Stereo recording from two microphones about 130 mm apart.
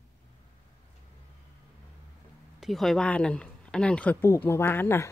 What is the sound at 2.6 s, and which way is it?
Speech, centre (ahead or behind).